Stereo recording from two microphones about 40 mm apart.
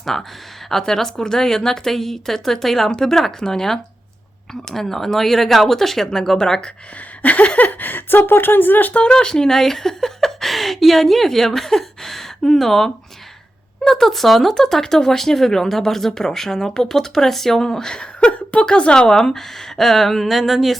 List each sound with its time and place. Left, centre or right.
0.0 s speech: centre
7.2 s speech: left
9.1 s a woman's voice: centre
19.1 s speech: centre